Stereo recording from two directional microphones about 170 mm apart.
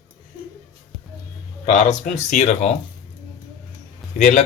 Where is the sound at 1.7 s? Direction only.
45° left (ahead or behind).